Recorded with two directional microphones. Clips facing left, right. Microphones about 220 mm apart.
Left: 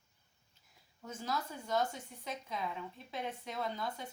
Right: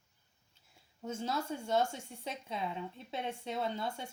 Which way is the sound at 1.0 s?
25° right (ahead or behind).